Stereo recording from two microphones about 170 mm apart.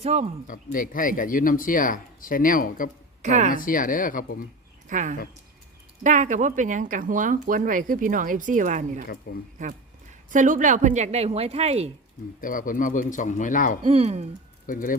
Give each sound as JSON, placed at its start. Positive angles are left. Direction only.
{"t": 0.0, "sound": "a woman's voice", "side_deg": -40}
{"t": 0.4, "sound": "speech", "side_deg": 55}
{"t": 3.2, "sound": "speech", "side_deg": -45}
{"t": 3.5, "sound": "speech", "side_deg": 55}
{"t": 4.9, "sound": "speech", "side_deg": -50}
{"t": 9.3, "sound": "speech", "side_deg": 65}
{"t": 10.3, "sound": "a woman's voice", "side_deg": -50}
{"t": 12.4, "sound": "speech", "side_deg": 55}
{"t": 13.8, "sound": "a woman's voice", "side_deg": -35}
{"t": 14.7, "sound": "speech", "side_deg": 55}